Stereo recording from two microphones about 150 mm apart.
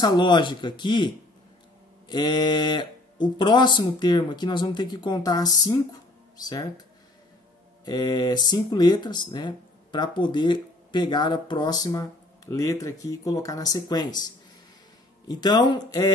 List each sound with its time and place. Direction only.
0.0 s speech: 30° left (ahead or behind)
7.8 s speech: 30° left (ahead or behind)